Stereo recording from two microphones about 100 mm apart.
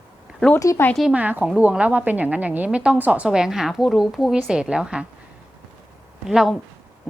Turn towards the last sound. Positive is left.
turn(degrees=-5)  # may be behind; listen again after turning